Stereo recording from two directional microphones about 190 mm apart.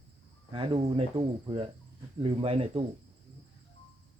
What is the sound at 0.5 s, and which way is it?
Speech, 30° right (ahead or behind).